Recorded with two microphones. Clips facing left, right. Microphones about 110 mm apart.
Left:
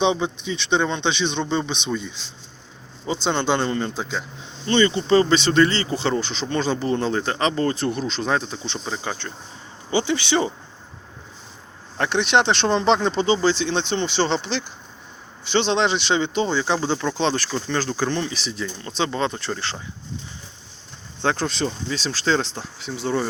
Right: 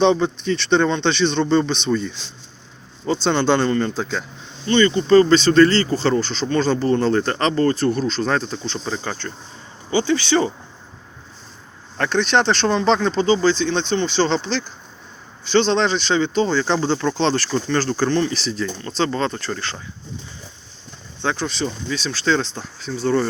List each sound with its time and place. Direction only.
0.0 s speech: 15° left (ahead or behind)
4.6 s speech: 25° left (ahead or behind)
8.8 s speech: 5° left (ahead or behind)
9.9 s speech: 20° left (ahead or behind)
11.9 s speech: 20° left (ahead or behind)
15.5 s speech: 20° left (ahead or behind)
21.2 s speech: 40° left (ahead or behind); by 23.2 s 20° left (ahead or behind)